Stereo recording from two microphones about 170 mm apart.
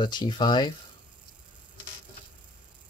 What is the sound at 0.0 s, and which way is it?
Speech, 25° left (ahead or behind).